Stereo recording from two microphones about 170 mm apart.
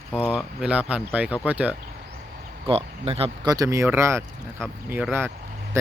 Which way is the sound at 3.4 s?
20° right (ahead or behind).